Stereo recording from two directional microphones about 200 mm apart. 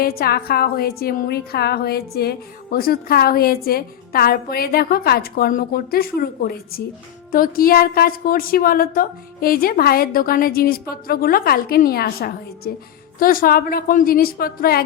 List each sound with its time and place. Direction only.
0.0 s a woman's voice: 50° left (ahead or behind)